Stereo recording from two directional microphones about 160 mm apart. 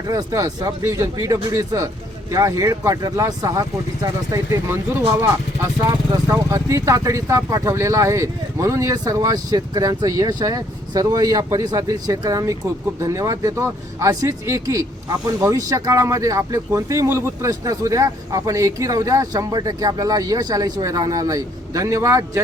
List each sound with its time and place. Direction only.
0.1 s speech: 20° right (ahead or behind)